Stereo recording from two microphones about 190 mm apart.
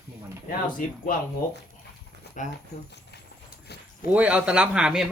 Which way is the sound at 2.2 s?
60° left (ahead or behind).